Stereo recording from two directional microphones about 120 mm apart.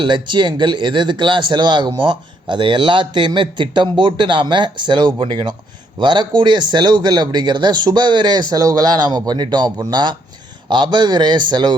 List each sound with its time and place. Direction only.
0.0 s speech: 40° right (ahead or behind)